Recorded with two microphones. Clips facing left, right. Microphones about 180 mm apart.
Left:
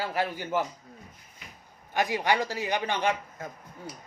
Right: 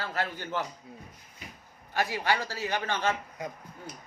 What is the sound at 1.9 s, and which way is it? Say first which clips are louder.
Speech: left 2 dB; 15° left (ahead or behind).